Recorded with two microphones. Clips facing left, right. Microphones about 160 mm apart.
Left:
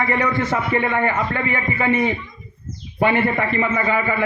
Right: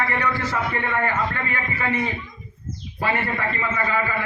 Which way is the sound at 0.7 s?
20° left (ahead or behind).